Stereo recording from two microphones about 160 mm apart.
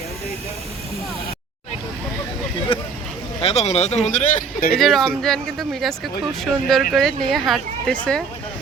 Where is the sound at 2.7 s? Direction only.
35° left (ahead or behind).